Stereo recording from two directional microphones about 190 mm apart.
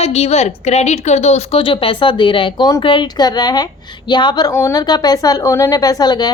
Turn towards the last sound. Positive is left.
turn(degrees=20)  # may be behind; listen again after turning